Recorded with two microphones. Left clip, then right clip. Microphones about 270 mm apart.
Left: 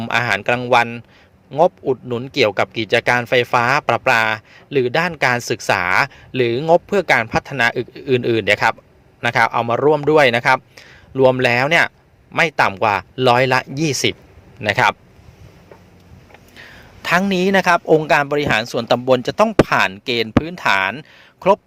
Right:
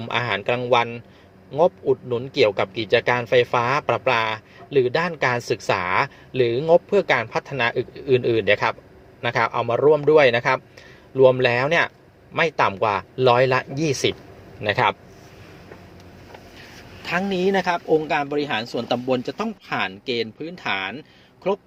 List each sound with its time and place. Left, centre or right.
0.0 s speech: left
17.0 s speech: left